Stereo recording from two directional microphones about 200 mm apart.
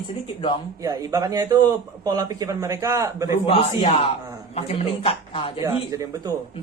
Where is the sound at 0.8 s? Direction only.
20° right (ahead or behind).